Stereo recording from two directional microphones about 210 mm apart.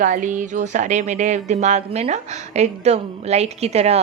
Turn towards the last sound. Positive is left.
turn(degrees=-30)  # may be behind; listen again after turning